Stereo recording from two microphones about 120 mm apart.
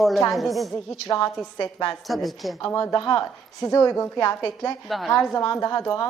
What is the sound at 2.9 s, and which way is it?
A woman's voice, 30° left (ahead or behind).